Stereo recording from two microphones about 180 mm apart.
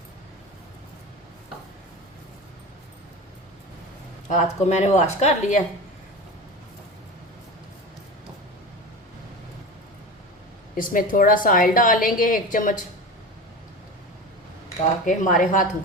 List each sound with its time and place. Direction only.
4.3 s a woman's voice: 40° left (ahead or behind)
10.8 s a woman's voice: 50° left (ahead or behind)
14.8 s a woman's voice: 40° left (ahead or behind)